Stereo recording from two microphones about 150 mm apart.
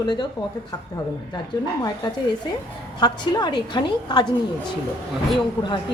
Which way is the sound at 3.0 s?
30° left (ahead or behind).